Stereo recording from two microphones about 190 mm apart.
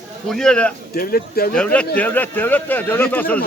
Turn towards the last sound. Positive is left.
turn(degrees=10)  # may be behind; listen again after turning